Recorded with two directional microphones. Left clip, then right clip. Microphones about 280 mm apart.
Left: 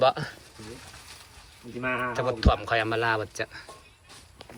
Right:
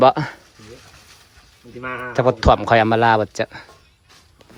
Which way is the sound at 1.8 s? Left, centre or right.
Centre.